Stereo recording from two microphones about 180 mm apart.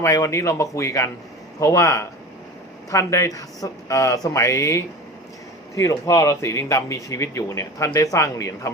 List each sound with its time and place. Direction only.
0.0 s speech: 15° left (ahead or behind)